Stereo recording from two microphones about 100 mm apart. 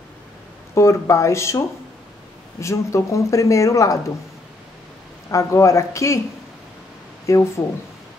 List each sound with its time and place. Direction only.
0.7 s speech: 30° left (ahead or behind)
2.6 s speech: 30° left (ahead or behind)
5.3 s speech: 30° left (ahead or behind)
7.2 s speech: 30° left (ahead or behind)